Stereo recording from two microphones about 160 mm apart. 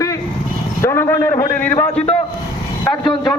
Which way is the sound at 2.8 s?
25° left (ahead or behind).